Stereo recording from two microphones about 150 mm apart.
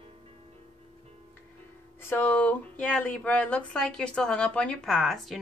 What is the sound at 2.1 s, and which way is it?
Speech, 10° left (ahead or behind).